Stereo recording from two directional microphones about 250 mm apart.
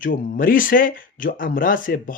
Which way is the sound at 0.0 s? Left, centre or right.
Left.